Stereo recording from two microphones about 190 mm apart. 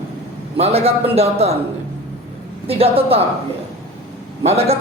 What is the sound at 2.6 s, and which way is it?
Speech, 30° right (ahead or behind).